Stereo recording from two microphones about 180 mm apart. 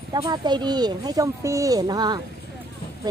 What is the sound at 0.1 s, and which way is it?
Speech, 25° right (ahead or behind).